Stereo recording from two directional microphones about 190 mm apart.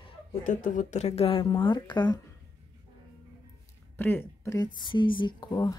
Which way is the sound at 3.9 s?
10° left (ahead or behind).